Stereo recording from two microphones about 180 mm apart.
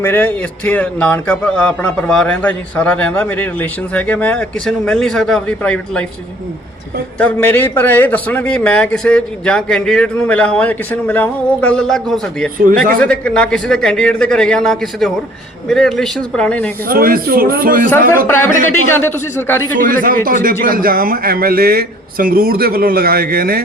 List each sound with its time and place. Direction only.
0.0 s a man's voice: 10° left (ahead or behind)
7.2 s a man's voice: 10° left (ahead or behind)
16.9 s speech: 55° right (ahead or behind)
18.3 s a man's voice: 10° left (ahead or behind)
19.7 s a man's voice: 50° right (ahead or behind)